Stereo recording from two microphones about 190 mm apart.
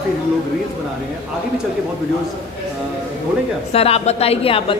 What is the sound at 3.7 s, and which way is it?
A woman's voice, 30° left (ahead or behind).